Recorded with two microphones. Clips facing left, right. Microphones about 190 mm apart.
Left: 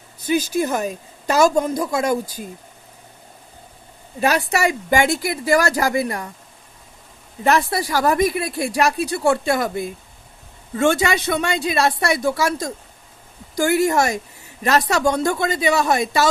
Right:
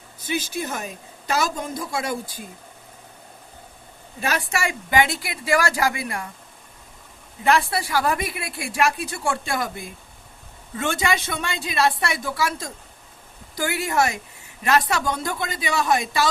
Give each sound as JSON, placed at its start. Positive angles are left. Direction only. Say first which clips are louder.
{"t": 0.3, "sound": "speech", "louder": "left 8 dB", "side_deg": 40}
{"t": 4.2, "sound": "speech", "louder": "left 7 dB", "side_deg": 40}
{"t": 7.4, "sound": "speech", "louder": "left 2 dB", "side_deg": 40}
{"t": 11.3, "sound": "speech", "louder": "left 8 dB", "side_deg": 45}